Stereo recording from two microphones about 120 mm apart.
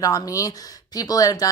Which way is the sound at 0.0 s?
30° left (ahead or behind).